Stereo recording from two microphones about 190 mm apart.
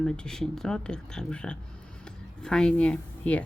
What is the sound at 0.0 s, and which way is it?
Speech, 5° left (ahead or behind).